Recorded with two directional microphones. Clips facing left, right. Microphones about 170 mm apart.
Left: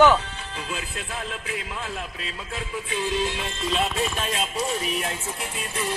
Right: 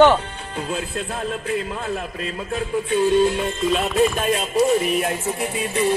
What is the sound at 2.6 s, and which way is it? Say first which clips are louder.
Music: right 10 dB; 45° right (ahead or behind).